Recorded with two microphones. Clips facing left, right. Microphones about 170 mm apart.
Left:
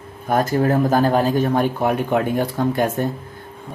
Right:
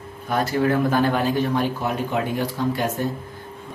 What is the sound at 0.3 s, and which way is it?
Speech, 45° left (ahead or behind).